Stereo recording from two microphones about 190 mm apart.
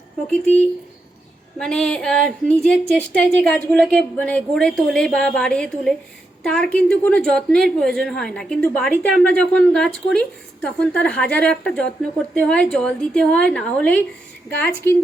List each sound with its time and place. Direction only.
0.3 s a woman's voice: 10° left (ahead or behind)